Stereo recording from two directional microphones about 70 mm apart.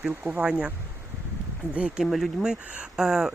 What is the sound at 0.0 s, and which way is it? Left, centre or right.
Speech, centre.